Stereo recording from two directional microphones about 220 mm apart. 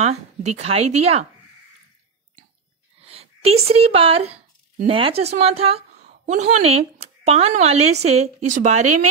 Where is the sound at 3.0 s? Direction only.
25° right (ahead or behind).